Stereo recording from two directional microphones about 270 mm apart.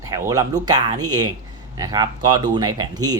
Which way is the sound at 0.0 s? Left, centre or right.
Centre.